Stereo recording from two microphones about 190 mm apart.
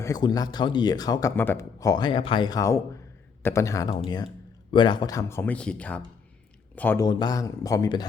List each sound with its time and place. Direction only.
0.0 s a man's voice: 20° left (ahead or behind)
3.8 s a man's voice: 30° left (ahead or behind); by 7.0 s 10° left (ahead or behind)
7.0 s a man's voice: 20° left (ahead or behind)